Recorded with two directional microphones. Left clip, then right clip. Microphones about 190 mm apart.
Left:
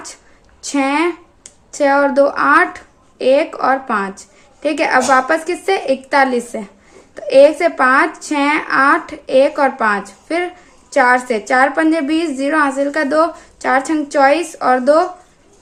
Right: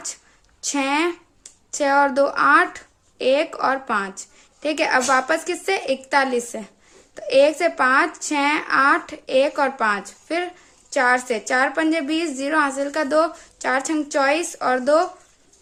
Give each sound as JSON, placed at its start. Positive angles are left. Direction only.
{"t": 0.6, "sound": "a woman's voice", "side_deg": -20}